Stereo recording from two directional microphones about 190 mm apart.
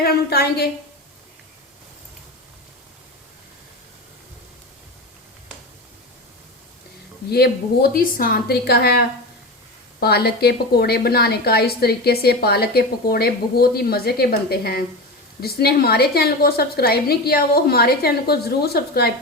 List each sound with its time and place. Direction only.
0.0 s a woman's voice: 55° left (ahead or behind)
7.3 s a woman's voice: 55° left (ahead or behind)